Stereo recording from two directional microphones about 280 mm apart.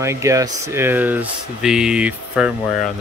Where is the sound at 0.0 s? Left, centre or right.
Centre.